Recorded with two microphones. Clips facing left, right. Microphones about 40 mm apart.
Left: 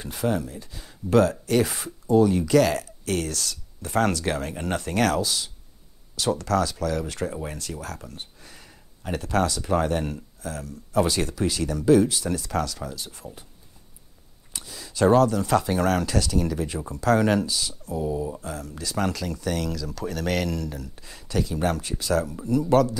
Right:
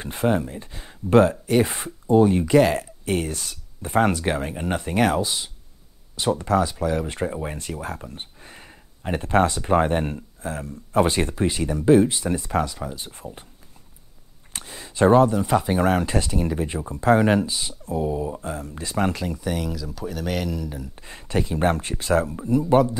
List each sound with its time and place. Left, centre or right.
0.0 s speech: right
14.5 s speech: right; by 21.0 s centre
21.0 s speech: right